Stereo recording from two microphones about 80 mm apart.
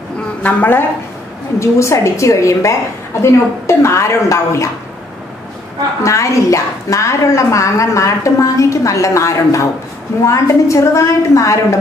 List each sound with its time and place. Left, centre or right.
0.4 s a woman's voice: left
1.6 s a woman's voice: left
6.0 s a woman's voice: left